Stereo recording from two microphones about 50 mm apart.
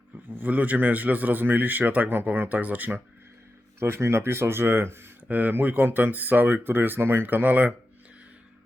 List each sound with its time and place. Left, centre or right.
0.3 s a man's voice: right
3.8 s speech: right
5.3 s a man's voice: right